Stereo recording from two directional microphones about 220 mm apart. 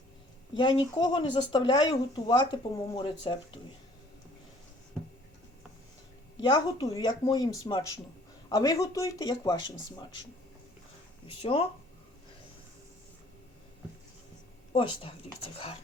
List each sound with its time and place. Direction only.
0.5 s speech: 20° left (ahead or behind)
6.4 s speech: 15° left (ahead or behind)
11.4 s speech: 25° left (ahead or behind)
14.7 s speech: 25° left (ahead or behind)